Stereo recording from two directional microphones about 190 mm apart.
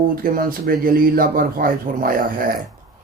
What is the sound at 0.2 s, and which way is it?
Speech, 50° right (ahead or behind).